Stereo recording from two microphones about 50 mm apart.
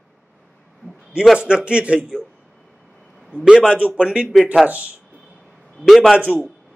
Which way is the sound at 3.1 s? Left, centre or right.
Centre.